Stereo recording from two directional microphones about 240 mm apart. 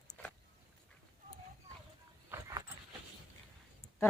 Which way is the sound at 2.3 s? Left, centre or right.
Centre.